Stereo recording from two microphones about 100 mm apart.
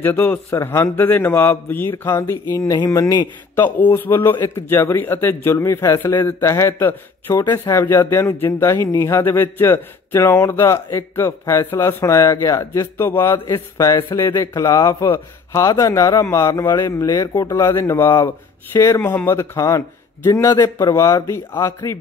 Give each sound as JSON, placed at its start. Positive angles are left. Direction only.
{"t": 0.0, "sound": "a man's voice", "side_deg": 20}
{"t": 17.1, "sound": "a man's voice", "side_deg": 40}